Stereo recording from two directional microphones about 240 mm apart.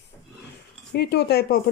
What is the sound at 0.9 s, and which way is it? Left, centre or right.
Speech, left.